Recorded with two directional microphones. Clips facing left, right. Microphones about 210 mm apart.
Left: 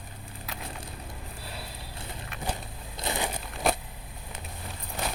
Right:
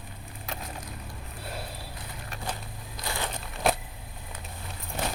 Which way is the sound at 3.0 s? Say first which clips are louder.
Left 3 dB; 20° left (ahead or behind).